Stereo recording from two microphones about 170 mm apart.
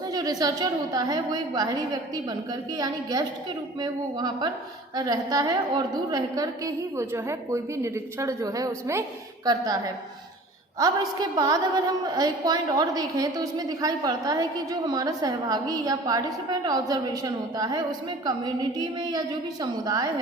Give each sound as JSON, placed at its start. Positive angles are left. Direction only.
{"t": 0.1, "sound": "a woman's voice", "side_deg": -20}